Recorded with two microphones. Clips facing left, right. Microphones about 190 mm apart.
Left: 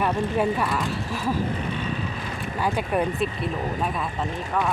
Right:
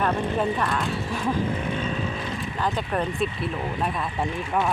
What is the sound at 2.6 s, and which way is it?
Speech, 10° left (ahead or behind).